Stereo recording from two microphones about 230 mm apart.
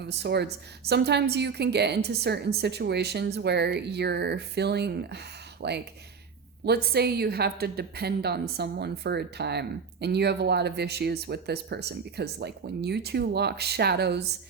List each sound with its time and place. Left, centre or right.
0.0 s a woman's voice: right